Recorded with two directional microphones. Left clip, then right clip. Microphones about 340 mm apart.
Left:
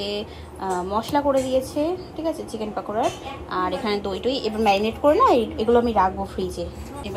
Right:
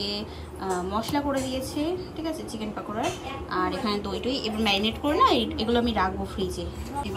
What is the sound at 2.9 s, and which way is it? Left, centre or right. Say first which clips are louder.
A woman's voice: left 5 dB; centre.